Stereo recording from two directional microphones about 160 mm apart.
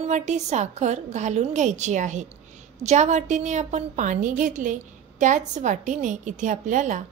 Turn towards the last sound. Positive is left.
turn(degrees=-50)  # may be behind; listen again after turning